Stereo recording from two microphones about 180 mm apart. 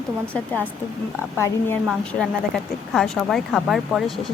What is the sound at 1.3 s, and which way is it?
Speech, 15° left (ahead or behind).